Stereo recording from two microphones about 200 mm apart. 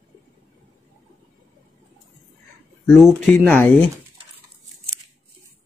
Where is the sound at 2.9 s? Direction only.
Centre (ahead or behind).